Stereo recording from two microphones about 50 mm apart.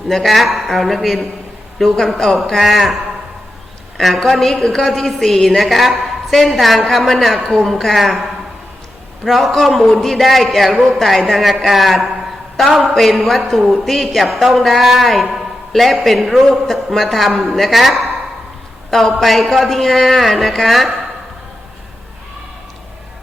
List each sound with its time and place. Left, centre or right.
0.1 s a woman's voice: centre
9.2 s a woman's voice: centre